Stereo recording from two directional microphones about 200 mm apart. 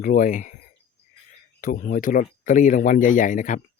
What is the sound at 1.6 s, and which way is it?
Speech, 45° left (ahead or behind).